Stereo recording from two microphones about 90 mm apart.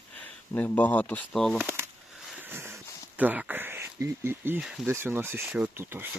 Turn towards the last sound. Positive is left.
turn(degrees=-25)  # may be behind; listen again after turning